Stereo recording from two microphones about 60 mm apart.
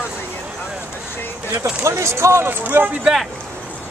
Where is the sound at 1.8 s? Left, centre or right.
Right.